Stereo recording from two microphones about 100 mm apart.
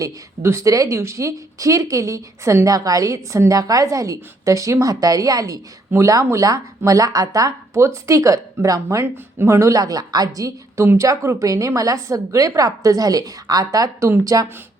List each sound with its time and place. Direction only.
0.0 s speech: 30° right (ahead or behind)